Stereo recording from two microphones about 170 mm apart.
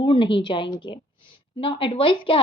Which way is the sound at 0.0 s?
30° left (ahead or behind).